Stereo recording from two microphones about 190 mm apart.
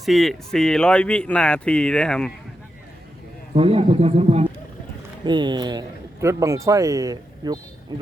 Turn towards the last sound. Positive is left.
turn(degrees=-20)  # may be behind; listen again after turning